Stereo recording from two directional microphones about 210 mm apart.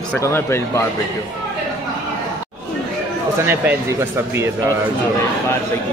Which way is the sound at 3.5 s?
10° right (ahead or behind).